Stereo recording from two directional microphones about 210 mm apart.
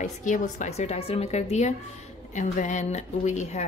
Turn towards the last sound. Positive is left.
turn(degrees=35)  # may be behind; listen again after turning